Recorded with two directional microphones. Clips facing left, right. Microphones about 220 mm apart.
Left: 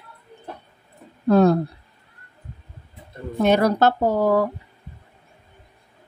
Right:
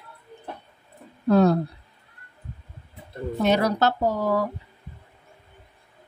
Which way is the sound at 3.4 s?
55° left (ahead or behind).